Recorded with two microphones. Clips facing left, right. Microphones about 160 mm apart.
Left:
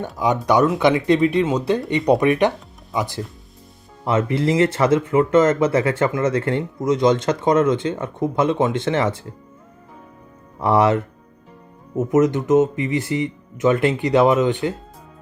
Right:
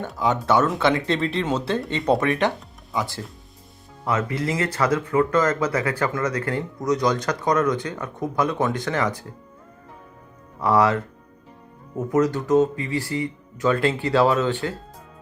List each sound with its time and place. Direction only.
0.0 s speech: 15° left (ahead or behind)
10.6 s speech: 25° left (ahead or behind)